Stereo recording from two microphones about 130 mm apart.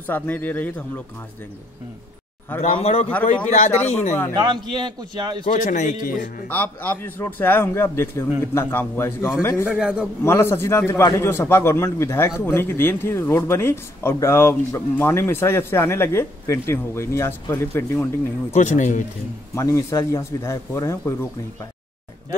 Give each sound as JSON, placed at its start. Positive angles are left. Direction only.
{"t": 0.0, "sound": "a man's voice", "side_deg": 15}
{"t": 2.6, "sound": "speech", "side_deg": 55}
{"t": 3.4, "sound": "speech", "side_deg": 65}
{"t": 4.4, "sound": "a man's voice", "side_deg": -35}
{"t": 5.5, "sound": "a man's voice", "side_deg": 75}
{"t": 6.5, "sound": "a man's voice", "side_deg": 15}
{"t": 9.7, "sound": "a man's voice", "side_deg": -5}
{"t": 10.2, "sound": "speech", "side_deg": 20}
{"t": 18.5, "sound": "speech", "side_deg": 65}
{"t": 19.5, "sound": "speech", "side_deg": 20}